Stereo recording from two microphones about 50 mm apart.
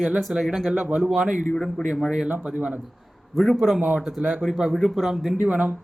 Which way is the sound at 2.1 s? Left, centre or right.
Centre.